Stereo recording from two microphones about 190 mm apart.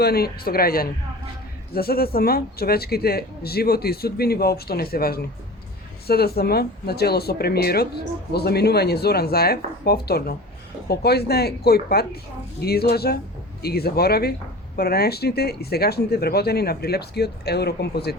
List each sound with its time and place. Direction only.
0.0 s speech: 55° left (ahead or behind)